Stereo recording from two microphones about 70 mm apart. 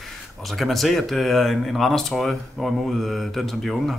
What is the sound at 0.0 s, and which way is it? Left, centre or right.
Speech, centre.